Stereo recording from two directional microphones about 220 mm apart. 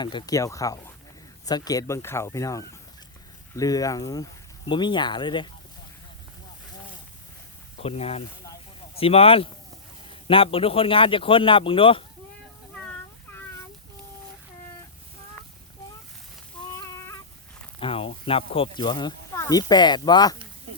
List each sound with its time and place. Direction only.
0.0 s a man's voice: 20° left (ahead or behind)
7.8 s a man's voice: 25° left (ahead or behind)
16.7 s a sound: 15° left (ahead or behind)
17.7 s speech: 25° left (ahead or behind)